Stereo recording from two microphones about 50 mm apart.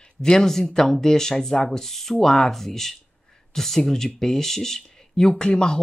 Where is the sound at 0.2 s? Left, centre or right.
Centre.